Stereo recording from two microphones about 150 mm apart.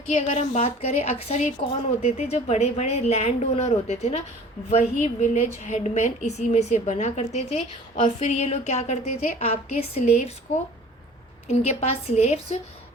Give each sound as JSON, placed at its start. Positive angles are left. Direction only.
{"t": 0.2, "sound": "a woman's voice", "side_deg": 50}
{"t": 11.4, "sound": "a woman's voice", "side_deg": 45}